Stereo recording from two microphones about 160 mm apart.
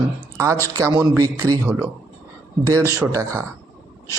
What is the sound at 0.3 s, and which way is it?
A man's voice, 20° right (ahead or behind).